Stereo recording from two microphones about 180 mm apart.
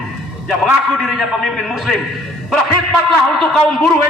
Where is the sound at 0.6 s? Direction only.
Centre (ahead or behind).